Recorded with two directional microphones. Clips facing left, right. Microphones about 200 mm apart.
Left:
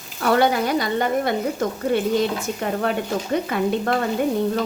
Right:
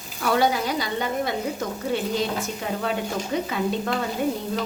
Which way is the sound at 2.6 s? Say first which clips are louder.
Left 5 dB; 55° left (ahead or behind).